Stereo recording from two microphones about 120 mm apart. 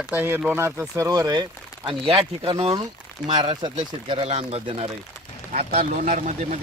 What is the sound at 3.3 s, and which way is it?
Speech, 40° right (ahead or behind).